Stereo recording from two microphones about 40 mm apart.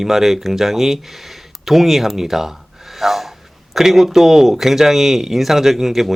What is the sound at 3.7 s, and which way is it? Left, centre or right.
Speech, centre.